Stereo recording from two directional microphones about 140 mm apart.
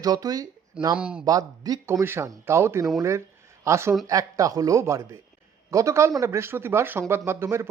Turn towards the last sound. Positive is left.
turn(degrees=-20)  # may be behind; listen again after turning